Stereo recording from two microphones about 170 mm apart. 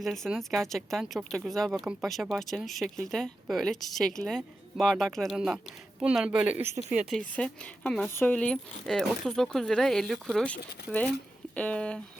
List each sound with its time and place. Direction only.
0.0 s speech: centre (ahead or behind)
7.2 s speech: 5° left (ahead or behind)